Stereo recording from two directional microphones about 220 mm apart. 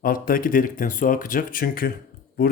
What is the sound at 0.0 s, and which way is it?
Speech, 40° left (ahead or behind).